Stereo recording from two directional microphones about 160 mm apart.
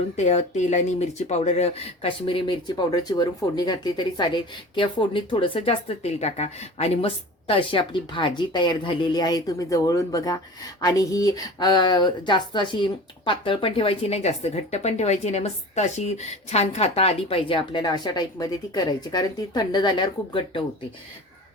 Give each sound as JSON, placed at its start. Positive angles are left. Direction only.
{"t": 0.2, "sound": "speech", "side_deg": 45}